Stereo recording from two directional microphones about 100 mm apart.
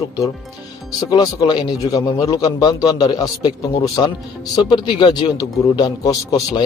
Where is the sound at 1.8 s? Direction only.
35° left (ahead or behind).